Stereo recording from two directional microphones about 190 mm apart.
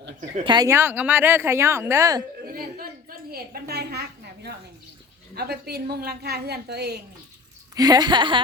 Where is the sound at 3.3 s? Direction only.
55° right (ahead or behind).